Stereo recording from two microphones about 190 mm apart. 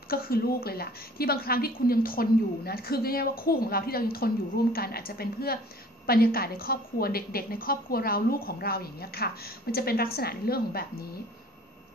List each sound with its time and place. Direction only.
0.1 s a woman's voice: 50° left (ahead or behind)